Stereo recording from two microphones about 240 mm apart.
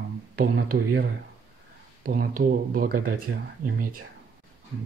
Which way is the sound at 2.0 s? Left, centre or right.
Right.